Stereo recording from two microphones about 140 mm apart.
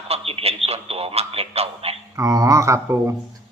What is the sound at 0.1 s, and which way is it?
A man's voice, 45° right (ahead or behind).